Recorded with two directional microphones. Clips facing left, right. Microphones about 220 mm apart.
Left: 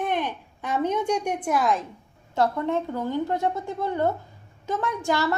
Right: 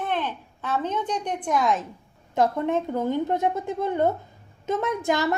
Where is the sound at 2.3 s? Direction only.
15° right (ahead or behind).